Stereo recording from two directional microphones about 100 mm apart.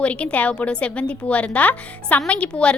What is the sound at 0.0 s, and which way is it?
A woman's voice, 10° left (ahead or behind).